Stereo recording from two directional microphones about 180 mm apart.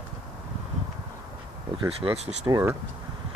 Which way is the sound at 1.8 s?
30° right (ahead or behind).